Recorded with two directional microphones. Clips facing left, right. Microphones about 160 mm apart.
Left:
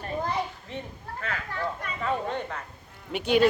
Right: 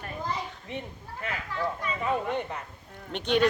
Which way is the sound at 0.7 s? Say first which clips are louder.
Even; 15° right (ahead or behind).